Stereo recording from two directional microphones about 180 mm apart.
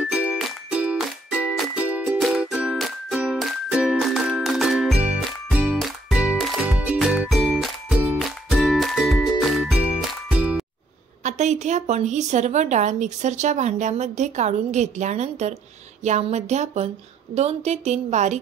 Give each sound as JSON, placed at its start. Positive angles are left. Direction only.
{"t": 0.1, "sound": "music", "side_deg": -5}
{"t": 11.2, "sound": "a woman's voice", "side_deg": -40}